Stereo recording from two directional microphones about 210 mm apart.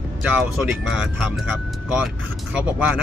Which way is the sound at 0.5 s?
Centre (ahead or behind).